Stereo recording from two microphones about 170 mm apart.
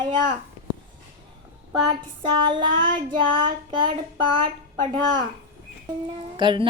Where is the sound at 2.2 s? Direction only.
30° right (ahead or behind).